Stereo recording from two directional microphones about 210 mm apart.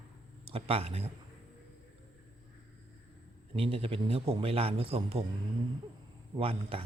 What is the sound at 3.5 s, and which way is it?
Speech, 25° right (ahead or behind).